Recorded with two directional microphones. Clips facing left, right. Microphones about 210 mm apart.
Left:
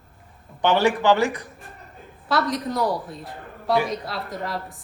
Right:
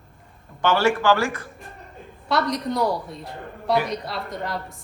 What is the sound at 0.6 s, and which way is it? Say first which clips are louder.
Speech: left 1 dB; 15° left (ahead or behind).